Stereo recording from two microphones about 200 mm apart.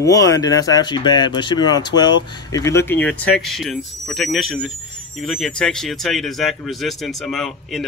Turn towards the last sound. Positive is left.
turn(degrees=0)  # may be behind; listen again after turning